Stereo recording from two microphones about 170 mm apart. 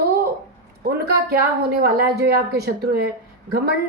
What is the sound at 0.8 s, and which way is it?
A woman's voice, 60° right (ahead or behind).